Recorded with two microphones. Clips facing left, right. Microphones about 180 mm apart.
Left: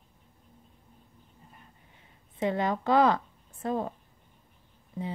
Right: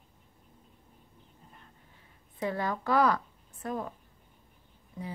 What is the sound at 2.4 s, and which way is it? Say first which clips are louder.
A woman's voice: left 4 dB; 20° left (ahead or behind).